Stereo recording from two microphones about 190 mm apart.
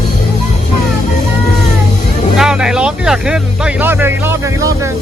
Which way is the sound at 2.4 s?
5° right (ahead or behind).